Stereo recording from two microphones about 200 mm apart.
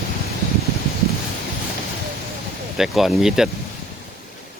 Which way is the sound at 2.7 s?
Centre (ahead or behind).